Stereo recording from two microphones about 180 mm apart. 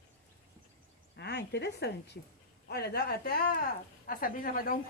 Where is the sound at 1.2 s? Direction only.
70° left (ahead or behind).